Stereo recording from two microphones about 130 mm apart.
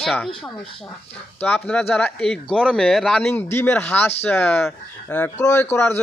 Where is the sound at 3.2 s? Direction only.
15° left (ahead or behind).